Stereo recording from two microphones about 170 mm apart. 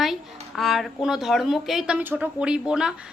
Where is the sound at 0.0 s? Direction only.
Centre (ahead or behind).